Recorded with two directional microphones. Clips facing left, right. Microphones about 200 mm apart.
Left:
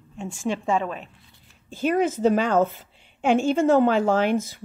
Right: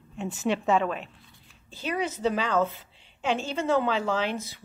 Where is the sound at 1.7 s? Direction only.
50° left (ahead or behind).